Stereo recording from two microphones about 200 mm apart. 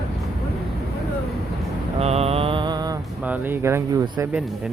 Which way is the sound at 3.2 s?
10° right (ahead or behind).